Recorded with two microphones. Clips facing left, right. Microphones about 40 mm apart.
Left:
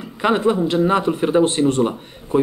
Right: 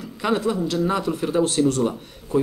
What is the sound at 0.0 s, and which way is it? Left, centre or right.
A man's voice, left.